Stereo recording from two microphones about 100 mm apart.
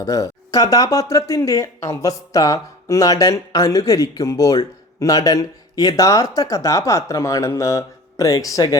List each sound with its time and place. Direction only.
0.0 s speech: 35° left (ahead or behind)